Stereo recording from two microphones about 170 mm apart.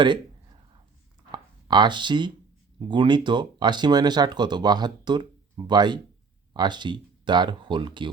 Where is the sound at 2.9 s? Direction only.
30° right (ahead or behind).